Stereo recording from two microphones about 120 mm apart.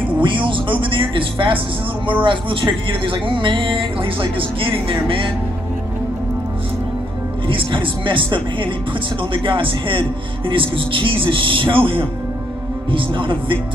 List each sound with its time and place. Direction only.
0.2 s speech: 45° right (ahead or behind)
7.4 s speech: 45° right (ahead or behind)